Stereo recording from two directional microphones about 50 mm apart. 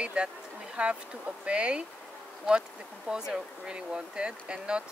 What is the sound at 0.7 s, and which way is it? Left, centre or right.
Speech, right.